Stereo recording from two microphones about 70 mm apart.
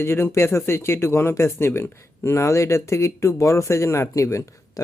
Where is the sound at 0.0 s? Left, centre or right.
Left.